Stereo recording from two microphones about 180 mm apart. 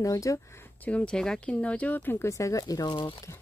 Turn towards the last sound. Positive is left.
turn(degrees=25)  # may be behind; listen again after turning